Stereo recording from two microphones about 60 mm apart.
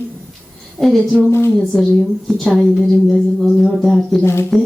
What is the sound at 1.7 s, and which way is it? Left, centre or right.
Speech, centre.